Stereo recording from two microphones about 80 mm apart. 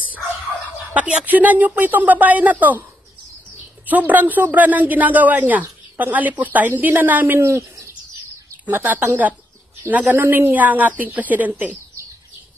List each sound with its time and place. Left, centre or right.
0.9 s speech: centre
3.8 s speech: right
7.4 s speech: right
8.6 s speech: right